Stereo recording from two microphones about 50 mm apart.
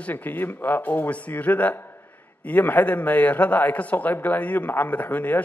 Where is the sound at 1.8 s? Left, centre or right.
Left.